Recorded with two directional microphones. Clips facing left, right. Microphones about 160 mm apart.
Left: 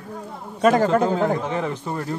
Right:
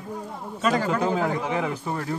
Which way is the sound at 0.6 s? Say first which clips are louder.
Left 7 dB; 50° left (ahead or behind).